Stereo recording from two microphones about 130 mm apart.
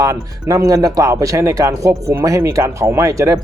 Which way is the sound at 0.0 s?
25° right (ahead or behind).